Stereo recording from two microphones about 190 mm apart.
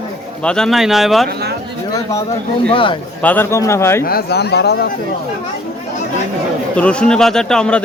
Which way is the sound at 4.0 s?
50° left (ahead or behind).